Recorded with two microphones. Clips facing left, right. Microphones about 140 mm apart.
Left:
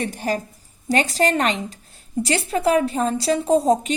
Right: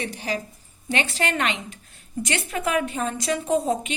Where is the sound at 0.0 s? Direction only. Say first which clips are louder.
Left 5 dB; 45° left (ahead or behind).